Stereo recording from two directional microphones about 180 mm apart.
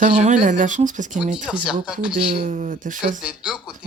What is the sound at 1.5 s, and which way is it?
Speech, centre (ahead or behind).